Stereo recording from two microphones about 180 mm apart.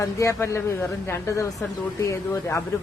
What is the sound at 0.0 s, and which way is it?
Speech, 15° left (ahead or behind).